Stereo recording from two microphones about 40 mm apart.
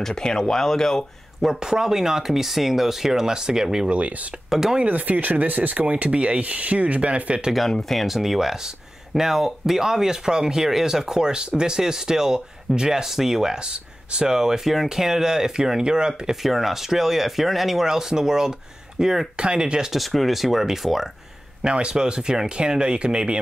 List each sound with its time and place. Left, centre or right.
0.0 s speech: centre
1.4 s speech: centre
3.9 s speech: right
4.5 s speech: centre
4.8 s speech: right
5.9 s speech: right
7.9 s speech: centre
16.4 s speech: centre; by 19.9 s right
19.9 s speech: centre
21.6 s speech: right